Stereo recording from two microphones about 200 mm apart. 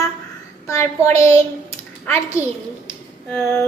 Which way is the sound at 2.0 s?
15° left (ahead or behind).